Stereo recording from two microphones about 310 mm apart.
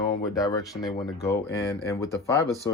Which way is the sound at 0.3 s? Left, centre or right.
Centre.